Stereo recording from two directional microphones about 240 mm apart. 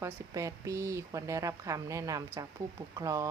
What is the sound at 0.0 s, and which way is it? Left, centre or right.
Speech, centre.